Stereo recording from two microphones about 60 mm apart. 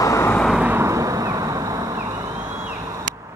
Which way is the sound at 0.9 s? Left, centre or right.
Right.